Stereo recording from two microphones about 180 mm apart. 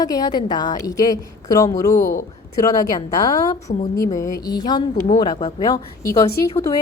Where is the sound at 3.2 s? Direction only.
20° left (ahead or behind).